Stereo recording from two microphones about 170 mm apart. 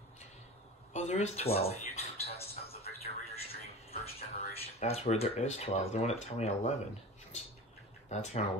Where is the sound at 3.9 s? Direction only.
35° left (ahead or behind).